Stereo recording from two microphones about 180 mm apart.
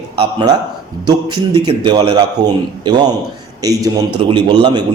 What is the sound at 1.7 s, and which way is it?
A man's voice, 25° right (ahead or behind).